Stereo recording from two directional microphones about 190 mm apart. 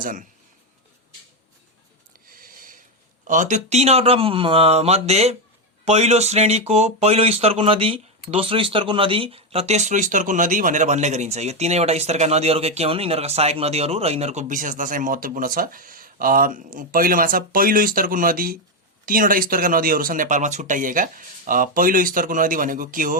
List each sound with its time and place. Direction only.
0.0 s speech: 45° right (ahead or behind)
2.3 s a sound: 50° right (ahead or behind)
3.2 s speech: 40° right (ahead or behind)